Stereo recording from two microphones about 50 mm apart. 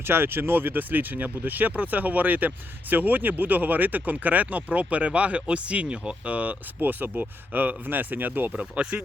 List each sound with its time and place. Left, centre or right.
0.0 s speech: right
8.5 s speech: right